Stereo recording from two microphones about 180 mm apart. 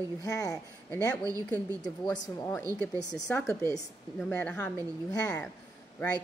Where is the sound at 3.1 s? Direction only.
5° left (ahead or behind).